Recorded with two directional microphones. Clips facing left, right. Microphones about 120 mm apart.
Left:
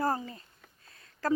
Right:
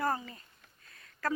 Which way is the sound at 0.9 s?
30° left (ahead or behind).